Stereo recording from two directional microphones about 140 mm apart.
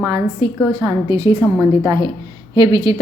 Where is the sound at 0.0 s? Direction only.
25° right (ahead or behind).